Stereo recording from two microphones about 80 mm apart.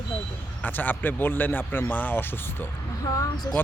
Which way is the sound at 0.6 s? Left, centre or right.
Left.